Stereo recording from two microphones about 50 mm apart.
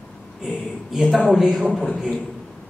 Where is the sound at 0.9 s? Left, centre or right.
Centre.